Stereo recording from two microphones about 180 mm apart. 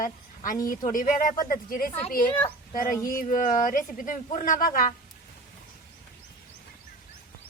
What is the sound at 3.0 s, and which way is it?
Speech, 50° left (ahead or behind).